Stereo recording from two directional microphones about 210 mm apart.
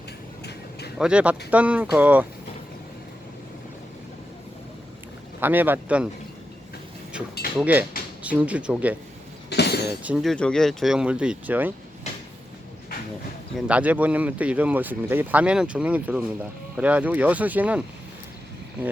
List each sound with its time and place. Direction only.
0.9 s speech: 5° right (ahead or behind)
5.4 s speech: 10° right (ahead or behind)
7.6 s speech: 10° right (ahead or behind)
9.5 s a sound: 50° left (ahead or behind)
10.0 s speech: 5° right (ahead or behind)
13.7 s speech: 5° right (ahead or behind)